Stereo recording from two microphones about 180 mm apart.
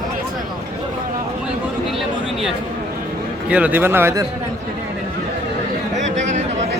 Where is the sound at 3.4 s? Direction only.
5° right (ahead or behind).